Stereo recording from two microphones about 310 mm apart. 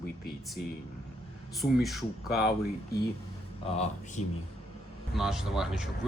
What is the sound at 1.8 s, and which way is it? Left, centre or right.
Speech, centre.